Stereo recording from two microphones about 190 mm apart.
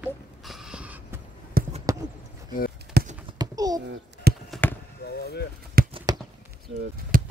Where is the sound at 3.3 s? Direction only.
20° right (ahead or behind).